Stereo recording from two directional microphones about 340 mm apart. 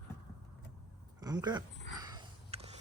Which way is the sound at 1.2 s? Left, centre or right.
Centre.